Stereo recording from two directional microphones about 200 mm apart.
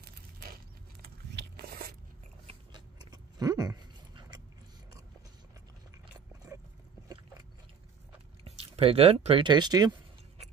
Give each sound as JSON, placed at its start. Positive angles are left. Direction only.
{"t": 1.0, "sound": "biting", "side_deg": -50}
{"t": 2.4, "sound": "biting", "side_deg": -20}
{"t": 8.5, "sound": "speech", "side_deg": -30}